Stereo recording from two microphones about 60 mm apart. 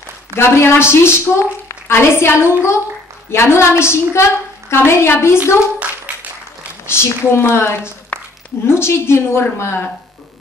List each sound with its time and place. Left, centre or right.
0.4 s a woman's voice: left
6.9 s a woman's voice: left
8.1 s a sound: centre
8.6 s a woman's voice: left